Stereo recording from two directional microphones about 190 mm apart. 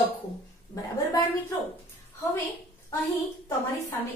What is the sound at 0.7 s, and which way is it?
Speech, 15° left (ahead or behind).